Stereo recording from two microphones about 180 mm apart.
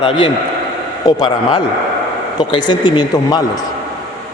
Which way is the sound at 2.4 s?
25° left (ahead or behind).